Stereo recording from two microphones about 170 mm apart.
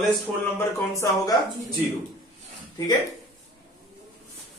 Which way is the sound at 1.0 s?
20° left (ahead or behind).